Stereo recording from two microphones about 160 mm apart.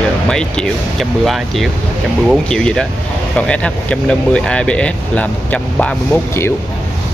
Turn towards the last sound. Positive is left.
turn(degrees=15)  # may be behind; listen again after turning